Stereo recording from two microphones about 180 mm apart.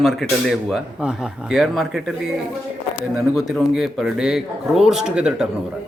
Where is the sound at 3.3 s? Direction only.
Centre (ahead or behind).